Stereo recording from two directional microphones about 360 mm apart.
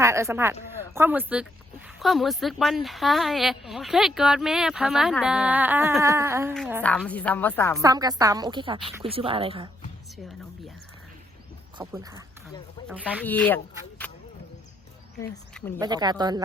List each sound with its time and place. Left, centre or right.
0.0 s a woman's voice: centre
7.8 s a woman's voice: centre
11.8 s a woman's voice: centre
15.2 s speech: centre
15.8 s a woman's voice: centre